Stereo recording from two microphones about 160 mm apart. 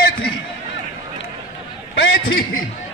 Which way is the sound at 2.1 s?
65° left (ahead or behind).